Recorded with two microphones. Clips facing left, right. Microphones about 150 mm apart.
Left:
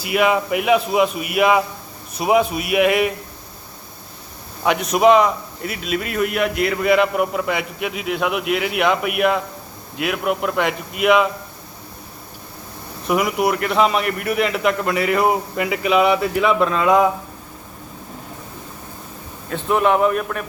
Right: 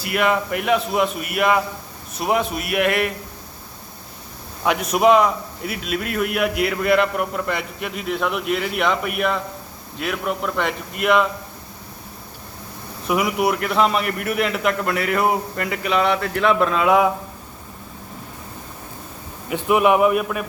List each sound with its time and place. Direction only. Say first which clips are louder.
0.0 s a man's voice: left 2 dB; 5° left (ahead or behind)
4.6 s a man's voice: left 2 dB; 5° right (ahead or behind)
13.1 s a man's voice: left 1 dB; centre (ahead or behind)
19.5 s speech: right 1 dB; 10° right (ahead or behind)